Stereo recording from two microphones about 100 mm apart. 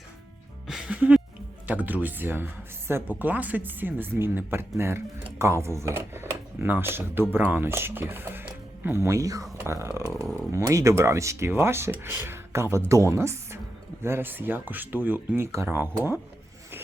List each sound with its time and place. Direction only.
0.7 s music: 10° right (ahead or behind)
1.6 s speech: 15° right (ahead or behind)